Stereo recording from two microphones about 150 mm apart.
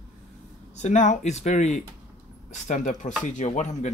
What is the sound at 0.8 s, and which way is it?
Speech, 50° left (ahead or behind).